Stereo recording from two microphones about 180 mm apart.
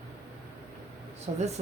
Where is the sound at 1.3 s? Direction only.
40° right (ahead or behind).